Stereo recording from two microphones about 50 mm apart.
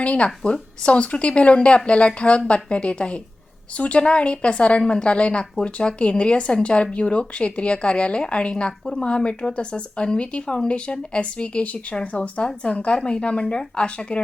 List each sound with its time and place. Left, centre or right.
0.0 s a woman's voice: left